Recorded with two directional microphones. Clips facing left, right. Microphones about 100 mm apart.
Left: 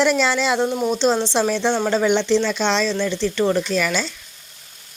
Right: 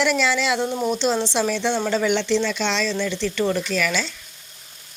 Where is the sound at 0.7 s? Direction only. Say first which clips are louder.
Left 2 dB; 10° left (ahead or behind).